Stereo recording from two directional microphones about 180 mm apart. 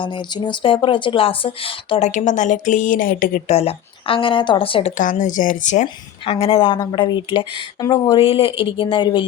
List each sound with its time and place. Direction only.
0.0 s speech: 25° left (ahead or behind); by 3.4 s 50° left (ahead or behind)
3.5 s speech: 35° left (ahead or behind)
6.2 s speech: 30° left (ahead or behind)